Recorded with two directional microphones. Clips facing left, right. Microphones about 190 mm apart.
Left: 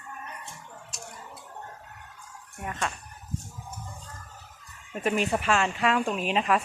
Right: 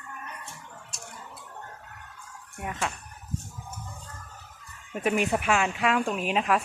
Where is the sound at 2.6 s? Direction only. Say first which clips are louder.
Even; 10° right (ahead or behind).